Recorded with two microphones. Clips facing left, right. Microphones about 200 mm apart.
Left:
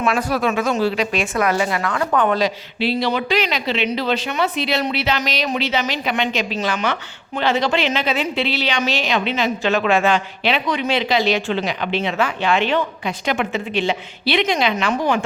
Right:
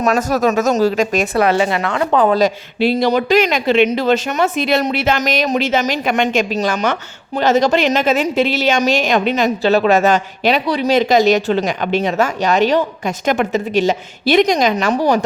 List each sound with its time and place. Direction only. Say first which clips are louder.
0.0 s speech: right 4 dB; 40° right (ahead or behind)
1.5 s a woman's voice: right 4 dB; 25° right (ahead or behind)